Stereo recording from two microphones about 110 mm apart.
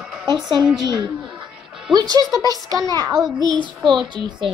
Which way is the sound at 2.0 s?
35° right (ahead or behind).